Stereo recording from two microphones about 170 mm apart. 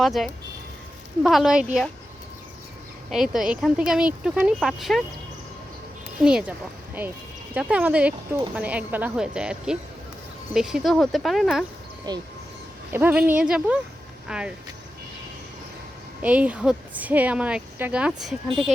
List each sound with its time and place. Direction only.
0.0 s speech: centre (ahead or behind)
3.1 s speech: centre (ahead or behind)
6.2 s speech: 5° right (ahead or behind)
7.5 s speech: 10° right (ahead or behind)
12.1 s speech: 20° right (ahead or behind)
12.9 s speech: 10° right (ahead or behind)
16.2 s speech: 10° right (ahead or behind)